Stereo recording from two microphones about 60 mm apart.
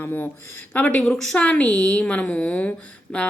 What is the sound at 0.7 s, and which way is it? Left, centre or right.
Speech, left.